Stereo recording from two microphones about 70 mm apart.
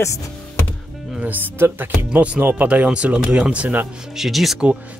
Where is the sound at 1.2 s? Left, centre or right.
Right.